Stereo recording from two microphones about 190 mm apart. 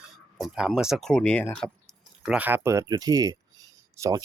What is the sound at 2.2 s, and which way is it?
Speech, 5° right (ahead or behind).